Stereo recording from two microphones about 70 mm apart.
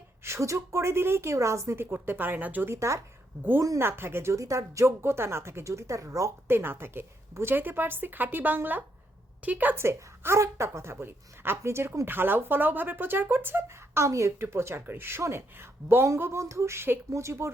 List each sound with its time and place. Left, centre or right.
0.3 s a woman's voice: right
2.6 s speech: right
3.8 s a woman's voice: right
6.5 s a woman's voice: right
9.7 s a woman's voice: right